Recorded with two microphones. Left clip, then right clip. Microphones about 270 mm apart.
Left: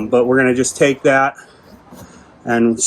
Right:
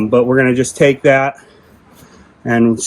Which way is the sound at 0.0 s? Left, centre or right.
Right.